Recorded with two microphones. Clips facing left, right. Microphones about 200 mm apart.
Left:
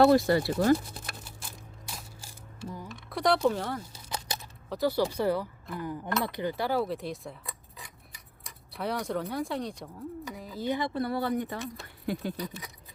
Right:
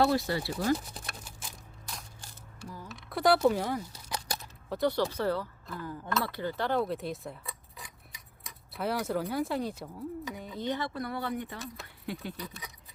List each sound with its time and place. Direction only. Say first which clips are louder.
0.0 s speech: left 6 dB; 55° left (ahead or behind)
1.5 s mechanisms: left 1 dB; 5° left (ahead or behind)
2.6 s a sound: left 4 dB; 20° left (ahead or behind)
3.1 s speech: right 1 dB; 5° right (ahead or behind)
4.7 s speech: left 1 dB; 5° left (ahead or behind)
10.8 s speech: left 5 dB; 30° left (ahead or behind)